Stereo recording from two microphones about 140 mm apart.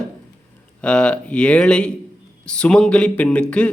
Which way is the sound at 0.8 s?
5° left (ahead or behind).